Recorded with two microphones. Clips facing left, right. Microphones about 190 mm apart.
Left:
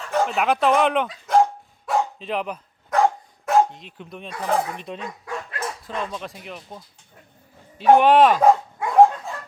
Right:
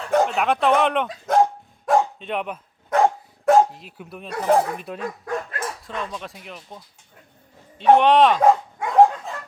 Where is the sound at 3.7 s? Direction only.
5° right (ahead or behind).